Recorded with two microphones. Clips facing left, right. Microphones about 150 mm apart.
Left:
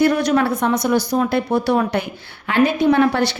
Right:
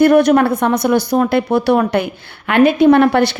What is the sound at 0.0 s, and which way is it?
A woman's voice, 55° right (ahead or behind).